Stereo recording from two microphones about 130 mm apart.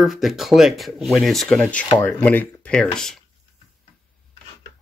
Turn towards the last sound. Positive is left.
turn(degrees=5)  # may be behind; listen again after turning